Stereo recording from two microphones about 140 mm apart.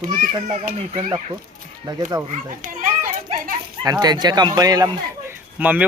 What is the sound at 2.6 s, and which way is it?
Children playing, 70° right (ahead or behind).